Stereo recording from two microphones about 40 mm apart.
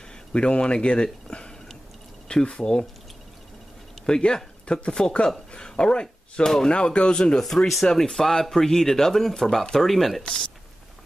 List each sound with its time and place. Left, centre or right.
0.3 s speech: left
4.0 s speech: centre
7.3 s speech: centre